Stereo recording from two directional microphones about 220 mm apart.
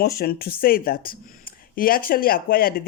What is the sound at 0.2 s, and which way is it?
Speech, 45° left (ahead or behind).